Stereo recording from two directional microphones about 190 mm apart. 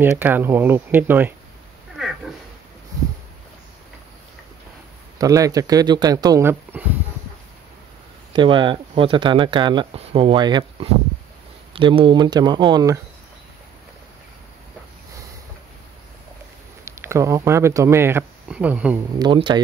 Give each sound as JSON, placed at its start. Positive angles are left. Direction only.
{"t": 0.0, "sound": "speech", "side_deg": -10}
{"t": 5.2, "sound": "speech", "side_deg": -20}
{"t": 8.3, "sound": "speech", "side_deg": -25}
{"t": 16.8, "sound": "speech", "side_deg": -15}
{"t": 19.1, "sound": "speech", "side_deg": -25}